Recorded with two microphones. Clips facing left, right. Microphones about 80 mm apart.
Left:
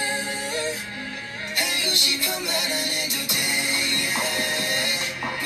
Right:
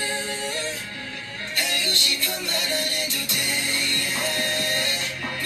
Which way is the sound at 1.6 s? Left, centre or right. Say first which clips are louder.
Even; centre.